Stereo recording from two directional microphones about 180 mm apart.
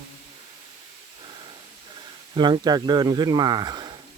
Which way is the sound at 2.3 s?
25° right (ahead or behind).